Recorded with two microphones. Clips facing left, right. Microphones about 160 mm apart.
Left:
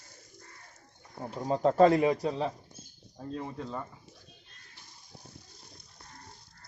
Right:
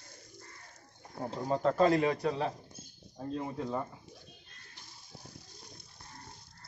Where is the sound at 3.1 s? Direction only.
10° right (ahead or behind).